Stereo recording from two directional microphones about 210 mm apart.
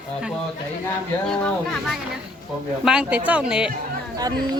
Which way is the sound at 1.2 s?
5° left (ahead or behind).